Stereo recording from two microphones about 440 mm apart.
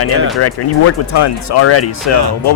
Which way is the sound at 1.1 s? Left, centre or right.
Left.